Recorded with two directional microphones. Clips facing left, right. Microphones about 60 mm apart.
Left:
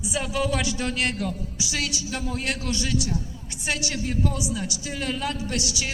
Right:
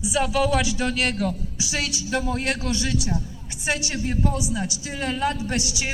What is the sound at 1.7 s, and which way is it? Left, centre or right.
A man's voice, right.